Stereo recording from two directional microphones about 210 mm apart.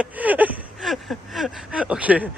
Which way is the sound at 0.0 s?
5° right (ahead or behind).